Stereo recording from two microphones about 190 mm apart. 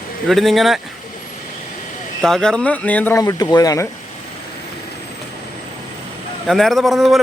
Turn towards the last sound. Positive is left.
turn(degrees=0)  # may be behind; listen again after turning